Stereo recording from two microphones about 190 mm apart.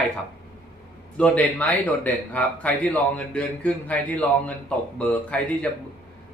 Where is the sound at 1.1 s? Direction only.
5° left (ahead or behind).